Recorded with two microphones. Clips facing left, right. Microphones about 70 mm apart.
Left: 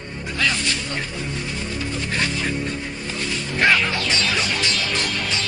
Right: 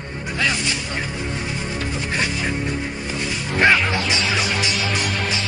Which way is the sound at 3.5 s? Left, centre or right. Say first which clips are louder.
Right 2 dB; centre.